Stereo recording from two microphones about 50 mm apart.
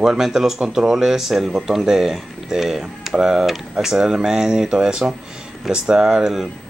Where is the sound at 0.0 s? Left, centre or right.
Centre.